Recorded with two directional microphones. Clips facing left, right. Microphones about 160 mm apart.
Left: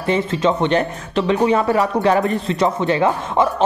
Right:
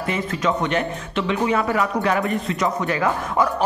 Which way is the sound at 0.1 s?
30° left (ahead or behind).